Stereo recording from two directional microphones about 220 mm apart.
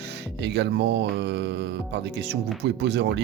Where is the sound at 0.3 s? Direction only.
50° right (ahead or behind).